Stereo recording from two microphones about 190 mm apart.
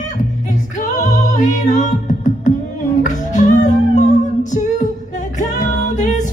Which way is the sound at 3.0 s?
40° left (ahead or behind).